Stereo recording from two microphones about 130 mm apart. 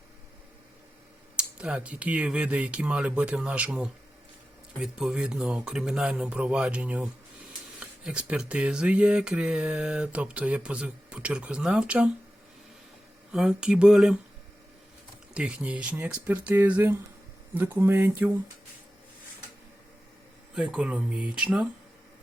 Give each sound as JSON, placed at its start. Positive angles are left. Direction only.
{"t": 1.4, "sound": "speech", "side_deg": -10}
{"t": 13.3, "sound": "speech", "side_deg": -5}
{"t": 15.3, "sound": "speech", "side_deg": -10}
{"t": 20.6, "sound": "speech", "side_deg": -10}